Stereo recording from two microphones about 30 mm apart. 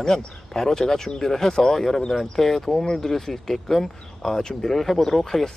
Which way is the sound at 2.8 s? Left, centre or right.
Centre.